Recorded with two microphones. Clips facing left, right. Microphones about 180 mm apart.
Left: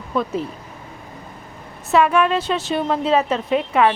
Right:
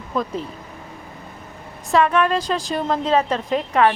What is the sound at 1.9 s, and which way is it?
A woman's voice, 10° left (ahead or behind).